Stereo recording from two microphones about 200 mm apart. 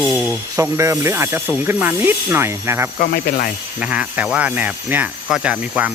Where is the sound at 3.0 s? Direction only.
45° left (ahead or behind).